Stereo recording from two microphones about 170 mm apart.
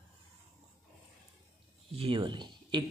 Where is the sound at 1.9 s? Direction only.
35° right (ahead or behind).